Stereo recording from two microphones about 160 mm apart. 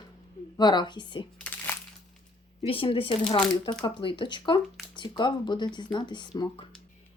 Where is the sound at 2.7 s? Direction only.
35° left (ahead or behind).